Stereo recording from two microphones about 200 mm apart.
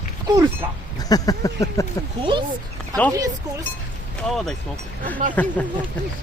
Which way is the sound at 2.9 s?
20° right (ahead or behind).